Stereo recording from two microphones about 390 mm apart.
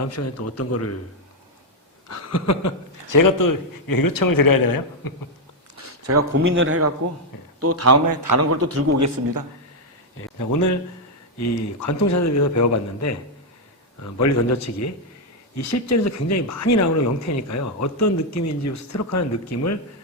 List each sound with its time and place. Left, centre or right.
0.0 s a man's voice: left
2.0 s speech: left
6.1 s a man's voice: right
10.3 s speech: left
14.2 s speech: left